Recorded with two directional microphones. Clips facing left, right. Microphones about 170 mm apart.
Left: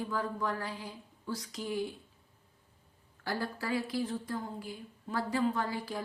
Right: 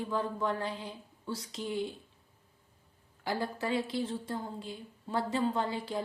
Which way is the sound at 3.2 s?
20° right (ahead or behind).